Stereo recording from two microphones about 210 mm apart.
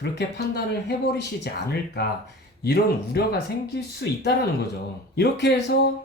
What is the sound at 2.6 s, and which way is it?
Speech, 50° left (ahead or behind).